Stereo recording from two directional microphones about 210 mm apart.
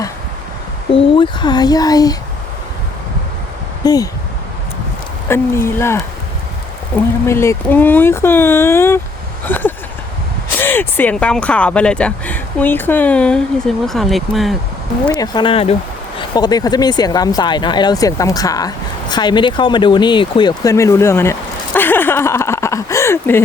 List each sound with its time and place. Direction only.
0.9 s speech: 25° left (ahead or behind)
3.8 s speech: 15° left (ahead or behind)
5.3 s speech: 10° left (ahead or behind)
9.4 s a sound: 10° left (ahead or behind)
10.6 s speech: 10° left (ahead or behind)
15.0 s speech: 20° left (ahead or behind)